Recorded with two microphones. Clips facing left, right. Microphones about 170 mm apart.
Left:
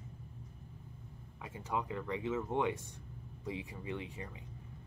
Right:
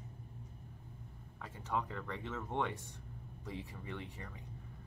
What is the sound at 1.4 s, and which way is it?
Speech, 10° left (ahead or behind).